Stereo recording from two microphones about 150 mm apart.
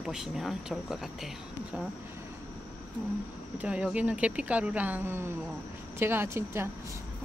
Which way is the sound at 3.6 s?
5° right (ahead or behind).